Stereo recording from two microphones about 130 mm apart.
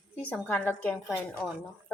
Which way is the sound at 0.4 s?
15° left (ahead or behind).